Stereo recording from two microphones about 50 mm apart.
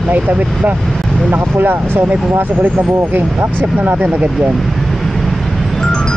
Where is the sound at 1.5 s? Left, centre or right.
Right.